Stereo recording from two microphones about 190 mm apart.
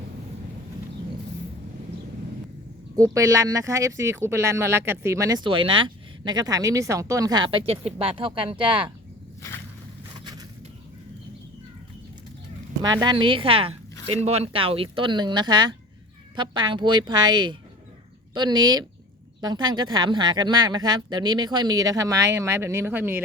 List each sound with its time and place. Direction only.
2.9 s speech: 15° right (ahead or behind)
12.8 s speech: 20° right (ahead or behind)